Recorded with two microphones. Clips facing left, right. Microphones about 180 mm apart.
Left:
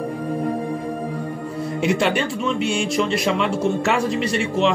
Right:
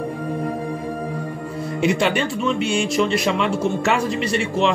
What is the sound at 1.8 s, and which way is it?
Speech, centre (ahead or behind).